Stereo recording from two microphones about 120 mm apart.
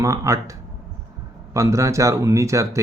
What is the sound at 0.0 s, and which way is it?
Speech, 25° right (ahead or behind).